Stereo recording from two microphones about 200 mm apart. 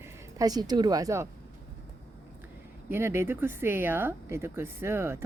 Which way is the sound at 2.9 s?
10° right (ahead or behind).